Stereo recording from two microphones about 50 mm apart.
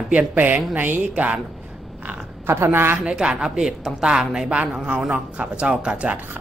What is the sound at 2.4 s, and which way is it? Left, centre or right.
Speech, right.